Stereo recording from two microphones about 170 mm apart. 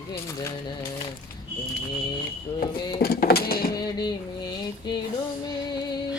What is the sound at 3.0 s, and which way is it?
Music, 65° left (ahead or behind).